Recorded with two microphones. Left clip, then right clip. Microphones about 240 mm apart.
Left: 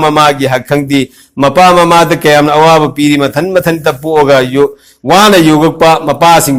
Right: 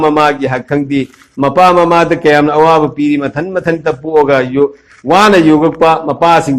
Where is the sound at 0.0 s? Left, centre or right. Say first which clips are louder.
Left 3 dB; left.